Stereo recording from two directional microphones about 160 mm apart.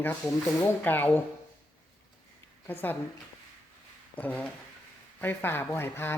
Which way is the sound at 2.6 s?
10° left (ahead or behind).